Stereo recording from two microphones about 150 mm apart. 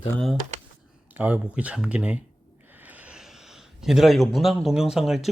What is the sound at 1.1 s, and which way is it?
Speech, 10° right (ahead or behind).